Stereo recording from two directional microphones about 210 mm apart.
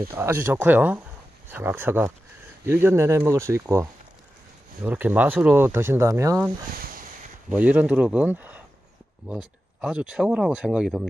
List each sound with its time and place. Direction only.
0.1 s speech: 10° right (ahead or behind)
6.8 s a sound: 40° right (ahead or behind)
7.4 s speech: 5° right (ahead or behind)